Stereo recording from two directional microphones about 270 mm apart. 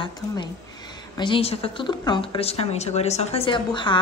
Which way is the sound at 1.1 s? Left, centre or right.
Centre.